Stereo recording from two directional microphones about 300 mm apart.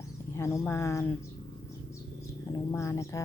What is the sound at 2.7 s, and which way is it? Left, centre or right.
Speech, centre.